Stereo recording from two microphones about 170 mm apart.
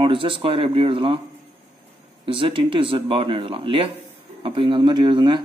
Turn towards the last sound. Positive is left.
turn(degrees=-25)  # may be behind; listen again after turning